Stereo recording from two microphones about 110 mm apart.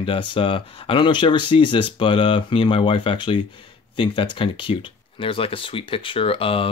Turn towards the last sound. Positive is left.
turn(degrees=55)  # may be behind; listen again after turning